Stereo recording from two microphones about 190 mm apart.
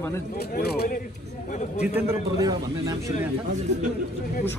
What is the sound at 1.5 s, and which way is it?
Speech, 40° left (ahead or behind).